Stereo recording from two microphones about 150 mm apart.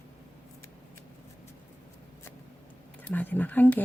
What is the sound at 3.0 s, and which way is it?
Speech, 10° left (ahead or behind).